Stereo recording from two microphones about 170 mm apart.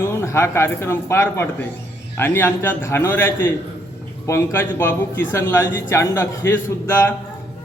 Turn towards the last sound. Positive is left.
turn(degrees=15)  # may be behind; listen again after turning